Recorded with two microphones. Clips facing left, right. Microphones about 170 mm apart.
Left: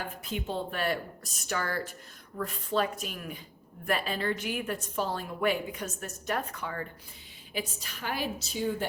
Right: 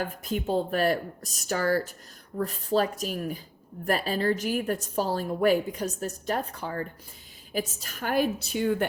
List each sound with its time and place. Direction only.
0.0 s a woman's voice: 45° right (ahead or behind)
7.5 s a woman's voice: 45° right (ahead or behind); by 8.9 s 60° right (ahead or behind)